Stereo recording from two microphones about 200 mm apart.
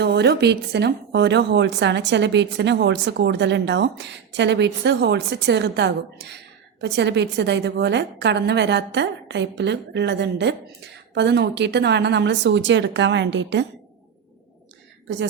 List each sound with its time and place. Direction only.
0.0 s speech: 55° right (ahead or behind)